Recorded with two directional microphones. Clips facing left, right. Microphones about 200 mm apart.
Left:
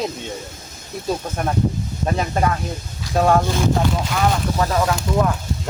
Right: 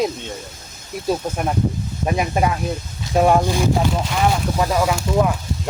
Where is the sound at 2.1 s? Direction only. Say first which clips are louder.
Right 1 dB; 15° right (ahead or behind).